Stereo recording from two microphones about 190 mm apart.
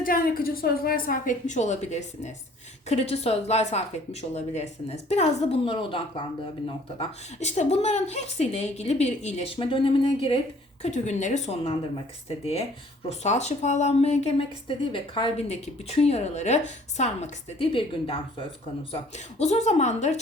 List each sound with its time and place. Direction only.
0.0 s a woman's voice: 50° left (ahead or behind)
13.1 s a woman's voice: 35° left (ahead or behind)